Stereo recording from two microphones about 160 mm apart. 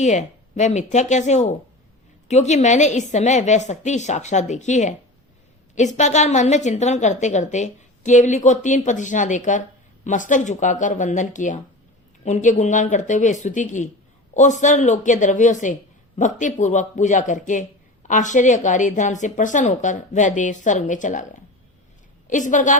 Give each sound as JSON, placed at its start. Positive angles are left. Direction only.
{"t": 0.0, "sound": "a woman's voice", "side_deg": 50}
{"t": 22.3, "sound": "a woman's voice", "side_deg": 50}